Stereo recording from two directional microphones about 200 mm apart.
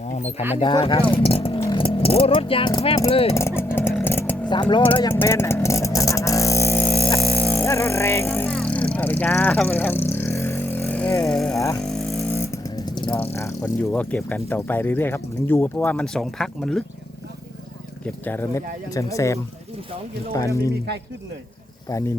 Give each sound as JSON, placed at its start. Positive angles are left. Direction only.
{"t": 0.1, "sound": "speech", "side_deg": 35}
{"t": 0.5, "sound": "speech", "side_deg": 25}
{"t": 3.3, "sound": "vehicle", "side_deg": 10}
{"t": 4.4, "sound": "speech", "side_deg": 20}
{"t": 5.2, "sound": "vehicle", "side_deg": 10}
{"t": 11.3, "sound": "music", "side_deg": 5}
{"t": 11.5, "sound": "a sound", "side_deg": 15}
{"t": 11.8, "sound": "a sound", "side_deg": 5}
{"t": 12.4, "sound": "vehicle", "side_deg": 15}
{"t": 13.3, "sound": "speech", "side_deg": 15}
{"t": 18.0, "sound": "speech", "side_deg": 10}
{"t": 21.8, "sound": "speech", "side_deg": 15}